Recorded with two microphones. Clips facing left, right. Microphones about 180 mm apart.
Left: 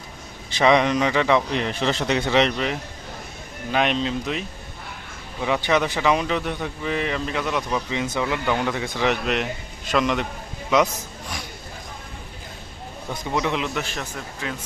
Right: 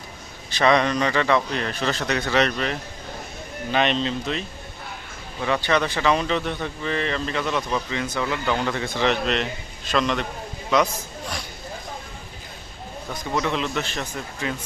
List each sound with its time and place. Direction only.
0.6 s speech: 15° left (ahead or behind)
3.7 s speech: 5° left (ahead or behind)
13.3 s speech: 15° left (ahead or behind)